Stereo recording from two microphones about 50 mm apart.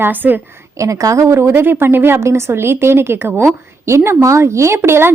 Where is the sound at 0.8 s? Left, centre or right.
Right.